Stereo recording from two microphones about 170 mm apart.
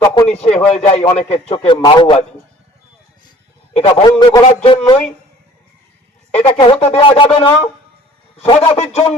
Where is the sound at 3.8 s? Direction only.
35° left (ahead or behind).